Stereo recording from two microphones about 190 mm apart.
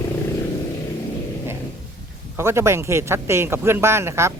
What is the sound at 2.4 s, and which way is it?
Speech, 15° right (ahead or behind).